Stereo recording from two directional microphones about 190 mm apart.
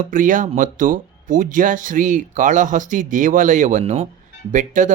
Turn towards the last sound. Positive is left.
turn(degrees=-40)  # may be behind; listen again after turning